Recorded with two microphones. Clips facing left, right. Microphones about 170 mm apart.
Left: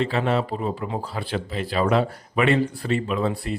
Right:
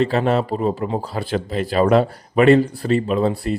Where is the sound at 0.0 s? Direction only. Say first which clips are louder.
Right 5 dB; 40° right (ahead or behind).